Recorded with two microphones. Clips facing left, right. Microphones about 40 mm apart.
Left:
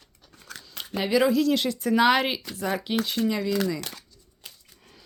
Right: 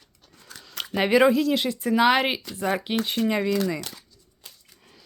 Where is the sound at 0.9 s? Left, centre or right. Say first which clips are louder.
Right 4 dB; right.